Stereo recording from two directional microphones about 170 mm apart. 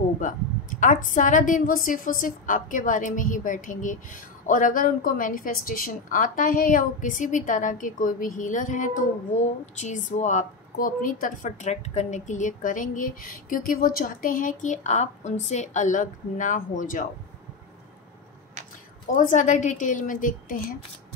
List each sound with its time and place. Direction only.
0.2 s a woman's voice: 50° left (ahead or behind)
19.1 s a woman's voice: 50° left (ahead or behind)